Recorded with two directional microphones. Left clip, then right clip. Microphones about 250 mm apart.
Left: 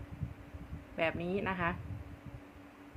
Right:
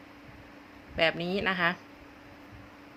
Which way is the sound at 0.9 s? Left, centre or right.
Centre.